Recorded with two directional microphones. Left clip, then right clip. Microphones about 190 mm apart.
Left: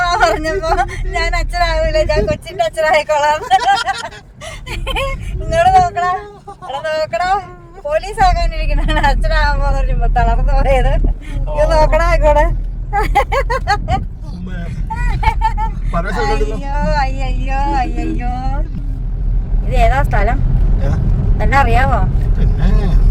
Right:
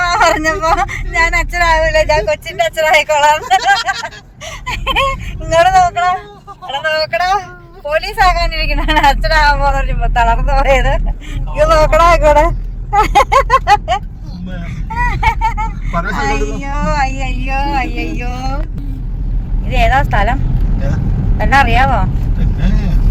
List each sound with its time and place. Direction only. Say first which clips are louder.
0.0 s speech: right 2 dB; 10° right (ahead or behind)
14.9 s speech: right 4 dB; 5° right (ahead or behind)
19.6 s speech: right 2 dB; 5° left (ahead or behind)
21.3 s speech: right 3 dB; 10° left (ahead or behind)